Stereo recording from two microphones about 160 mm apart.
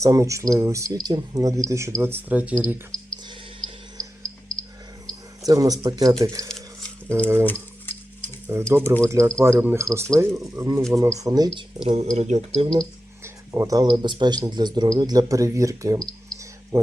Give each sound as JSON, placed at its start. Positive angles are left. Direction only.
{"t": 0.0, "sound": "speech", "side_deg": -20}
{"t": 4.5, "sound": "cricket", "side_deg": 5}
{"t": 5.5, "sound": "speech", "side_deg": -20}
{"t": 8.7, "sound": "speech", "side_deg": -15}
{"t": 11.9, "sound": "speech", "side_deg": -45}
{"t": 13.2, "sound": "speech", "side_deg": -15}
{"t": 16.7, "sound": "music", "side_deg": -20}